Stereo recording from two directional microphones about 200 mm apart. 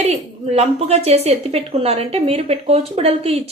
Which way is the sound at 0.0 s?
30° right (ahead or behind).